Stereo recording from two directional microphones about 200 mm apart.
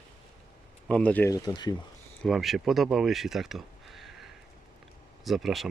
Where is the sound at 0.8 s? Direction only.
5° left (ahead or behind).